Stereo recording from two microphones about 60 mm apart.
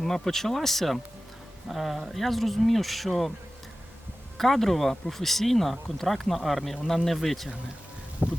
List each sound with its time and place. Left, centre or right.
0.0 s speech: centre
4.4 s speech: centre
8.2 s a sound: right